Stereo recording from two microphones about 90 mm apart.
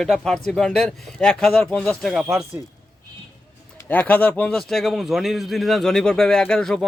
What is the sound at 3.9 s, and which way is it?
Speech, 20° left (ahead or behind).